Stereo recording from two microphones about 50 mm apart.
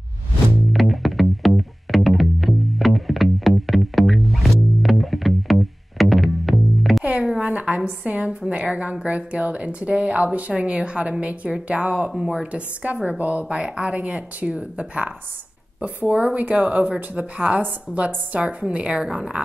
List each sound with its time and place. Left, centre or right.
0.7 s music: centre
7.3 s a sound: right
8.4 s a woman's voice: right